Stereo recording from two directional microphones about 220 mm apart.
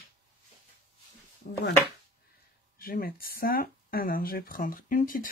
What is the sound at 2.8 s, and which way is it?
Speech, 40° left (ahead or behind).